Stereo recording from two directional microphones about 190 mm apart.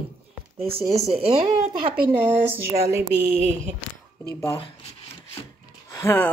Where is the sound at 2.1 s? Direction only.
10° right (ahead or behind).